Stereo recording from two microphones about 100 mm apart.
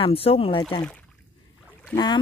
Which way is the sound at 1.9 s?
50° left (ahead or behind).